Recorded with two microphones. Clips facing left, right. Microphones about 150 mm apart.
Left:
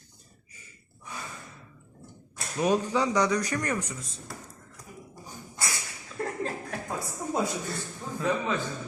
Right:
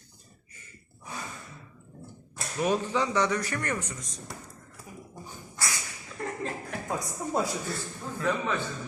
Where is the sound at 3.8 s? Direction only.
30° left (ahead or behind).